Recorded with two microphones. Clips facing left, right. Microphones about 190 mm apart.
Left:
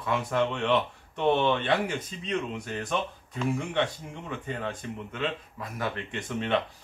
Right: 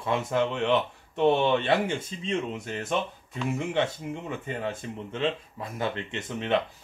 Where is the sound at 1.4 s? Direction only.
25° right (ahead or behind).